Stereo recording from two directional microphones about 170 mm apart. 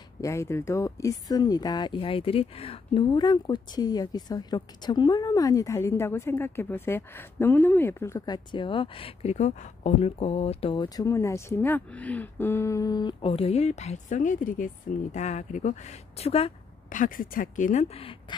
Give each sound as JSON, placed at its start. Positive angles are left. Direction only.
{"t": 0.2, "sound": "speech", "side_deg": 15}
{"t": 8.5, "sound": "speech", "side_deg": 30}
{"t": 11.1, "sound": "speech", "side_deg": 15}
{"t": 16.9, "sound": "speech", "side_deg": 50}